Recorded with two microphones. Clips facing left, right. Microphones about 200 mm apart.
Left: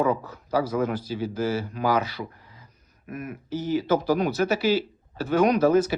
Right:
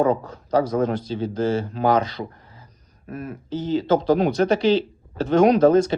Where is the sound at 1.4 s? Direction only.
25° right (ahead or behind).